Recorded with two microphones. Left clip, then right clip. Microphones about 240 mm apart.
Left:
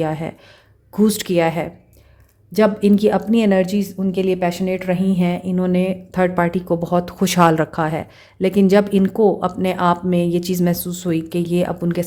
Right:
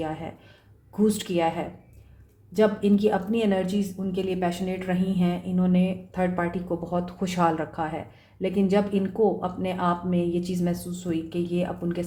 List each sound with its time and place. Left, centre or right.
0.0 s speech: left